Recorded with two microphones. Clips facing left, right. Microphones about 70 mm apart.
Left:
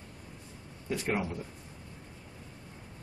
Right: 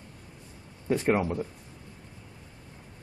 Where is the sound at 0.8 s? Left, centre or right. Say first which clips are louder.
Right 7 dB; right.